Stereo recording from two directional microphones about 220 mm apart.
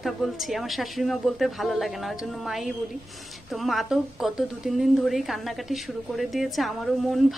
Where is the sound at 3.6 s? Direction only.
Centre (ahead or behind).